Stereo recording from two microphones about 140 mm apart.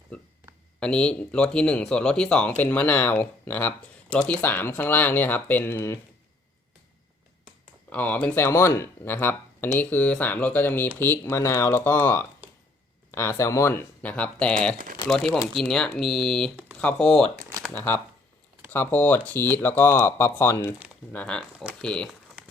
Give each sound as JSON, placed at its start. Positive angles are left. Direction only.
{"t": 0.8, "sound": "speech", "side_deg": 5}
{"t": 7.9, "sound": "speech", "side_deg": 10}